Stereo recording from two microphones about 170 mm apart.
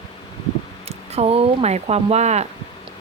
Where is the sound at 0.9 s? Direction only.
35° right (ahead or behind).